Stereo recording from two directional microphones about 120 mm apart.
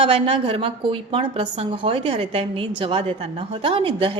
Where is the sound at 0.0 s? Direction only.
50° right (ahead or behind).